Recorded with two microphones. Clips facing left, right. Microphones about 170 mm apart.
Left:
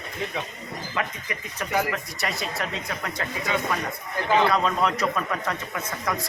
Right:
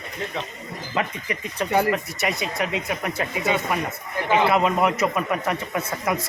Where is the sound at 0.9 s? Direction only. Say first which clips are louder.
Right 5 dB; 30° right (ahead or behind).